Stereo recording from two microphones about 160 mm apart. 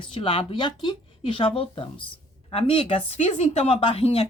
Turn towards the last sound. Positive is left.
turn(degrees=40)  # may be behind; listen again after turning